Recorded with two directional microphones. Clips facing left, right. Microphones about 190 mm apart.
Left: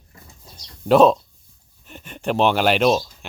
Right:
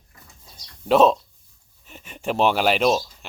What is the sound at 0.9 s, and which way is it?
Speech, centre (ahead or behind).